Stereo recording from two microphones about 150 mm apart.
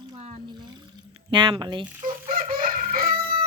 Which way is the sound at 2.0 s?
70° right (ahead or behind).